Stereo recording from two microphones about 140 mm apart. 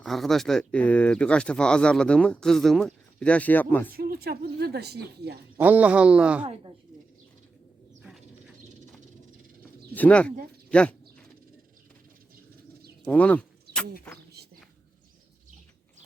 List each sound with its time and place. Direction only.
0.0 s speech: centre (ahead or behind)
3.9 s speech: 90° right
5.5 s speech: 10° right (ahead or behind)
9.9 s speech: 10° left (ahead or behind)
13.1 s speech: 10° left (ahead or behind)